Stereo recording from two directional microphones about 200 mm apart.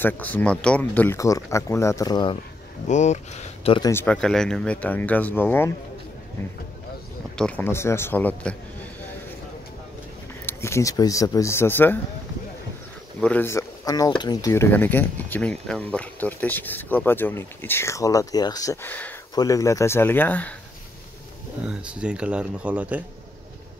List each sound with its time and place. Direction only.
0.0 s speech: 10° left (ahead or behind)
2.9 s speech: 35° left (ahead or behind)
3.9 s speech: 10° left (ahead or behind)
7.3 s speech: 5° left (ahead or behind)
10.4 s speech: 15° left (ahead or behind)
13.2 s speech: 10° left (ahead or behind)
21.6 s speech: 5° right (ahead or behind)